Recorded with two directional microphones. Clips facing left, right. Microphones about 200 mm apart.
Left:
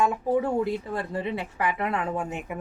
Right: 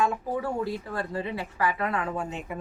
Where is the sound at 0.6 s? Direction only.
20° left (ahead or behind).